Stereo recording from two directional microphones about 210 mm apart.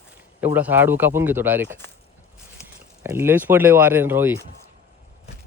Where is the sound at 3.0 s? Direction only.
10° right (ahead or behind).